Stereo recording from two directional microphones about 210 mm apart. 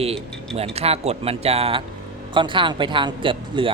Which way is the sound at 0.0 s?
30° right (ahead or behind).